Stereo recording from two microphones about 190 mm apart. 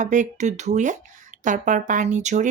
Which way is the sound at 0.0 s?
40° right (ahead or behind).